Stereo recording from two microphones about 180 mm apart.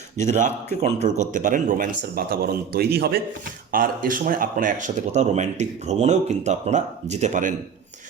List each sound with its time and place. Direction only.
0.2 s a man's voice: 45° right (ahead or behind); by 3.2 s 60° right (ahead or behind)
3.7 s speech: 50° right (ahead or behind)